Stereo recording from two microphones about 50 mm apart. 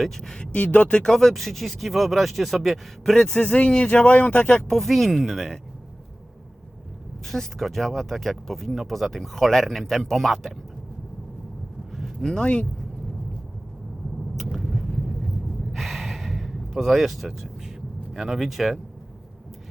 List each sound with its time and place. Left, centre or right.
0.2 s speech: centre
0.5 s speech: left
1.0 s speech: centre
3.4 s speech: left
4.7 s speech: centre
7.3 s speech: centre
11.9 s a sound: centre
12.3 s speech: centre
14.3 s vehicle: centre
15.7 s a sound: centre
18.1 s speech: centre